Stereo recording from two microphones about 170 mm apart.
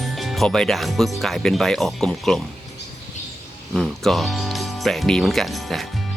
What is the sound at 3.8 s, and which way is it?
Speech, centre (ahead or behind).